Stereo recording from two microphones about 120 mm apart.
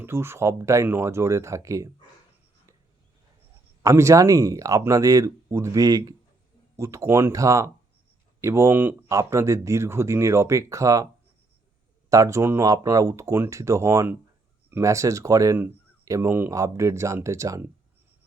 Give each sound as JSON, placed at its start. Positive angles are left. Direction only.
{"t": 0.0, "sound": "speech", "side_deg": -20}
{"t": 3.8, "sound": "speech", "side_deg": -25}
{"t": 12.1, "sound": "speech", "side_deg": -25}